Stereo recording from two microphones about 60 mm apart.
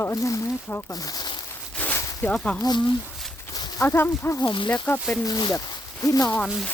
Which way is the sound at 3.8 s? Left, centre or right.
Left.